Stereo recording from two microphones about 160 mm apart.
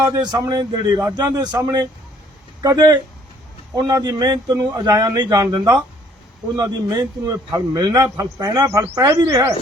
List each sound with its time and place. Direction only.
0.0 s a man's voice: 25° right (ahead or behind)